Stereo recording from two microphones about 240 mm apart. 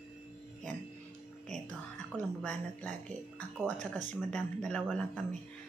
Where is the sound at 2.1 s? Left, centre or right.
Centre.